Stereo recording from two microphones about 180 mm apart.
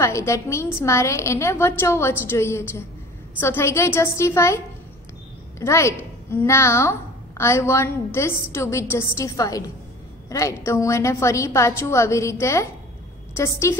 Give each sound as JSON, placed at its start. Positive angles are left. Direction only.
{"t": 0.0, "sound": "a woman's voice", "side_deg": 15}
{"t": 5.6, "sound": "a woman's voice", "side_deg": 15}